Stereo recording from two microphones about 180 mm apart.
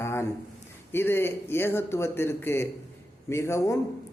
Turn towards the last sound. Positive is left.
turn(degrees=15)  # may be behind; listen again after turning